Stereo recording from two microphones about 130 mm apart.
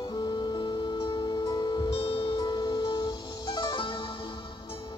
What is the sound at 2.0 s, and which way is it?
Music, 45° left (ahead or behind).